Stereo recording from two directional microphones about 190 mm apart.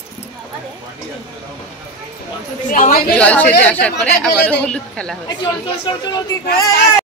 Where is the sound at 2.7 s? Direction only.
45° left (ahead or behind).